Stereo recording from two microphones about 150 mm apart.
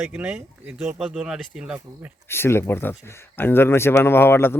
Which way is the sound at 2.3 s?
15° left (ahead or behind).